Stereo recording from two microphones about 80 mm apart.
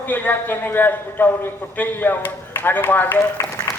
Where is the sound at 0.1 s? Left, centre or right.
Left.